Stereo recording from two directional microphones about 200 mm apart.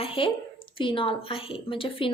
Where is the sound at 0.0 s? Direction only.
25° left (ahead or behind).